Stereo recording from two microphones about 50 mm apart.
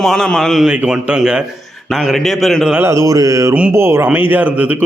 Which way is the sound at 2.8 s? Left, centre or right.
Right.